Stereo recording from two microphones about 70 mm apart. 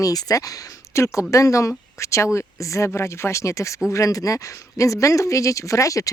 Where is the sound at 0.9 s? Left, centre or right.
Left.